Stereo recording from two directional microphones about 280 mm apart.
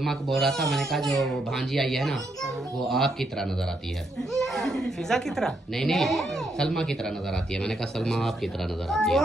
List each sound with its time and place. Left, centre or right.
0.0 s speech: centre